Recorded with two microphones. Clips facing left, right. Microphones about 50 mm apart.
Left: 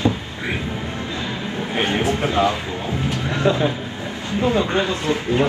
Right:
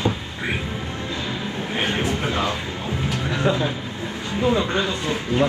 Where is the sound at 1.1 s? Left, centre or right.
Left.